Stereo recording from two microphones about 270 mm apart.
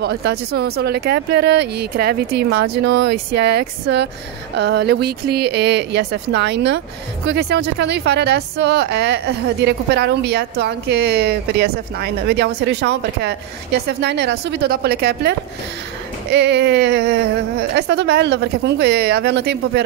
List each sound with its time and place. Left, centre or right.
0.0 s a woman's voice: right